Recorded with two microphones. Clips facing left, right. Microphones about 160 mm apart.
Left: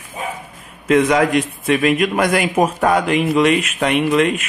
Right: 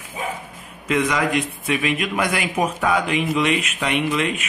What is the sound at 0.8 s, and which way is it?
A man's voice, 50° left (ahead or behind).